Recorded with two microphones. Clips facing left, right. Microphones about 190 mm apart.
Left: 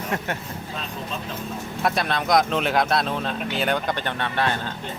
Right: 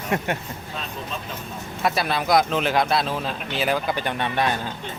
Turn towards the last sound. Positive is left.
turn(degrees=-15)  # may be behind; listen again after turning